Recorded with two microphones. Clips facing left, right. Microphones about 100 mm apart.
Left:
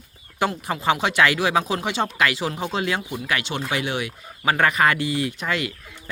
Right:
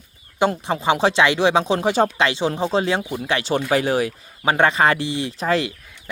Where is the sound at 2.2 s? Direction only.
25° right (ahead or behind).